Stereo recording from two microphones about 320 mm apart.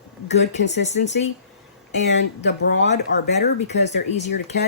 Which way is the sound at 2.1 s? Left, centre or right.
Left.